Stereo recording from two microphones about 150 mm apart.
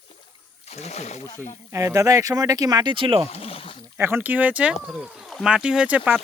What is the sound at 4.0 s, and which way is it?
Speech, 15° right (ahead or behind).